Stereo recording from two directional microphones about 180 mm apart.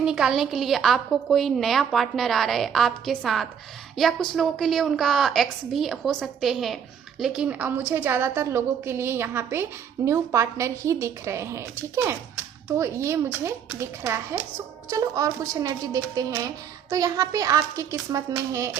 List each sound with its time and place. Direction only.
0.0 s a woman's voice: 5° right (ahead or behind)